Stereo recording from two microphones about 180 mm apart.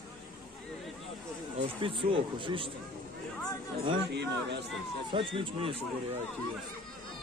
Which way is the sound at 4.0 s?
70° right (ahead or behind).